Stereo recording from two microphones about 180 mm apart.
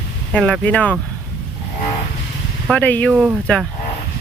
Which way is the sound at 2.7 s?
10° left (ahead or behind).